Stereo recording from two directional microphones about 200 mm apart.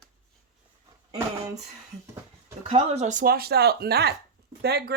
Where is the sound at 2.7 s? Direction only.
35° right (ahead or behind).